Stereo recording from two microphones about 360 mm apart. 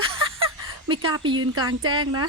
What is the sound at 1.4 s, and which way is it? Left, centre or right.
Speech, right.